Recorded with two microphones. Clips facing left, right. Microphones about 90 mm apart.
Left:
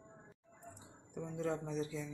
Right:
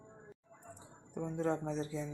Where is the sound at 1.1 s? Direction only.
35° right (ahead or behind).